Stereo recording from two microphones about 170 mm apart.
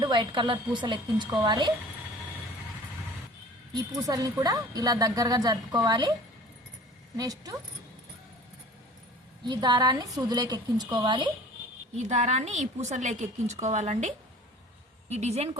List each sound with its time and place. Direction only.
0.0 s a woman's voice: 25° right (ahead or behind)
3.9 s a woman's voice: 20° right (ahead or behind)
7.2 s a woman's voice: 20° right (ahead or behind)
9.4 s a woman's voice: 25° right (ahead or behind)
12.0 s a woman's voice: 45° right (ahead or behind)
15.1 s a woman's voice: 40° right (ahead or behind)